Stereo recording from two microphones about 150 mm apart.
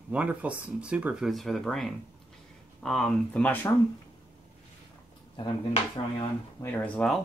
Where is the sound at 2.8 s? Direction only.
5° left (ahead or behind).